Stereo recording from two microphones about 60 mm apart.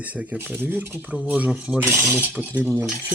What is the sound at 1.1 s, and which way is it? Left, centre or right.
Speech, right.